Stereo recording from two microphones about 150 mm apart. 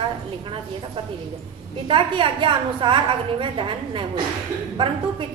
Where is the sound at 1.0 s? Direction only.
35° right (ahead or behind).